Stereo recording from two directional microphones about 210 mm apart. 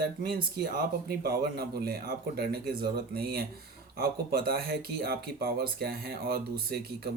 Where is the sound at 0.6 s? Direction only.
45° right (ahead or behind).